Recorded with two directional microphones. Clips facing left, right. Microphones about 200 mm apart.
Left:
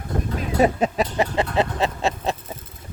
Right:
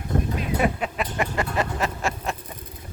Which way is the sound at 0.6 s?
35° left (ahead or behind).